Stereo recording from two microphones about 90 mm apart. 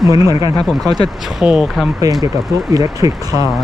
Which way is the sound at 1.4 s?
5° right (ahead or behind).